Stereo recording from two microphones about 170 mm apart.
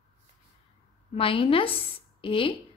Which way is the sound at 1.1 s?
30° left (ahead or behind).